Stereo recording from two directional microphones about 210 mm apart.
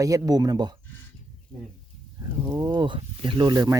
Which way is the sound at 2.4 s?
15° right (ahead or behind).